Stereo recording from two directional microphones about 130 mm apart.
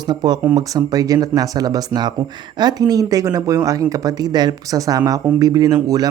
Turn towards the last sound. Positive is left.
turn(degrees=-30)  # may be behind; listen again after turning